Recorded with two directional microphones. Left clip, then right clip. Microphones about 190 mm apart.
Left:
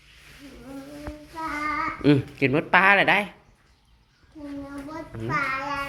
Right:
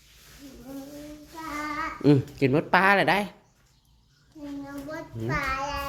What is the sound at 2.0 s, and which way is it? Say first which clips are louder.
Speech: right 1 dB; 25° right (ahead or behind).